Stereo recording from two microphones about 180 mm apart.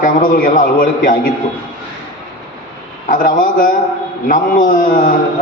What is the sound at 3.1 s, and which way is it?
A man's voice, 45° left (ahead or behind).